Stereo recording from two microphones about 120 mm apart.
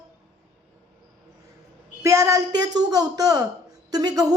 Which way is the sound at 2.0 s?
25° right (ahead or behind).